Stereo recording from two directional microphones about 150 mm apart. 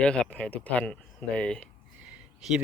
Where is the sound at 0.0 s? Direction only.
5° left (ahead or behind).